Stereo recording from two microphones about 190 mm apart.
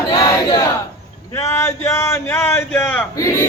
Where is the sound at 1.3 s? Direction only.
15° left (ahead or behind).